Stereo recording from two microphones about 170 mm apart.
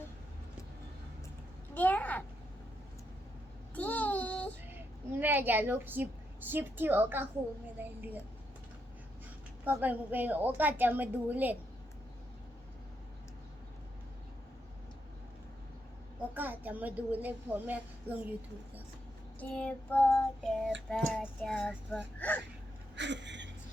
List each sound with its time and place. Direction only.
1.7 s a sound: 10° left (ahead or behind)
3.8 s child singing: 10° left (ahead or behind)
4.7 s a woman's voice: 10° right (ahead or behind)
9.6 s a woman's voice: 10° right (ahead or behind)
16.3 s a woman's voice: 10° right (ahead or behind)
19.4 s child singing: 5° left (ahead or behind)
23.0 s speech: 90° right